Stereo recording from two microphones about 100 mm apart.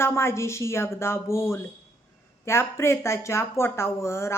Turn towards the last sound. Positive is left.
turn(degrees=25)  # may be behind; listen again after turning